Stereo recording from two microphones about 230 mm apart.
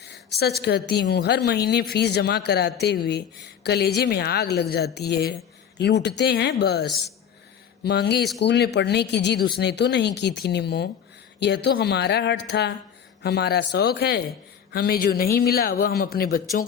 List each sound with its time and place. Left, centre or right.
0.0 s a woman's voice: left